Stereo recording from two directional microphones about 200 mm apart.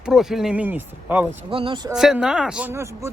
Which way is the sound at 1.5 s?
25° right (ahead or behind).